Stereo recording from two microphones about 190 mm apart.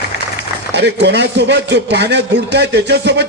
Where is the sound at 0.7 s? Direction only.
65° right (ahead or behind).